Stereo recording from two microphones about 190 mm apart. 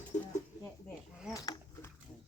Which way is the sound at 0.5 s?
10° right (ahead or behind).